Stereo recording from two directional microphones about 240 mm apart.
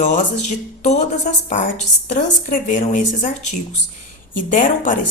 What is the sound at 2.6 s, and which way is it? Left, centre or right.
A woman's voice, left.